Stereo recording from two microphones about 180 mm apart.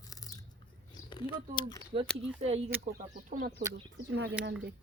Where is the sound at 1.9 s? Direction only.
35° right (ahead or behind).